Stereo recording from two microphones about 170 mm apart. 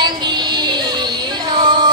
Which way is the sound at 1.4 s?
25° right (ahead or behind).